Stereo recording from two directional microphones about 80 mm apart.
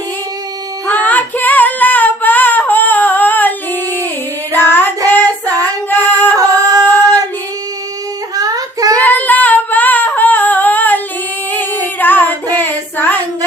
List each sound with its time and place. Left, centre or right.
0.9 s female singing: left
4.5 s child singing: left
6.0 s music: left
6.3 s a sound: right
6.8 s female singing: left
8.4 s a sound: right
9.0 s singing: left
11.9 s female singing: left